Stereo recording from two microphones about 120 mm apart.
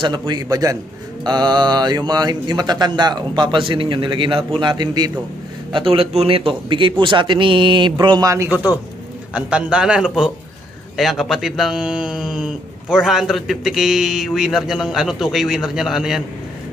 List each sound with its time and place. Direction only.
0.0 s speech: 40° right (ahead or behind)
8.3 s speech: 20° right (ahead or behind)
9.3 s a man's voice: 10° right (ahead or behind)